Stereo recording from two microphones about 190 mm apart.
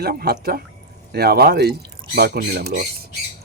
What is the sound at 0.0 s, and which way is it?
Speech, 55° right (ahead or behind).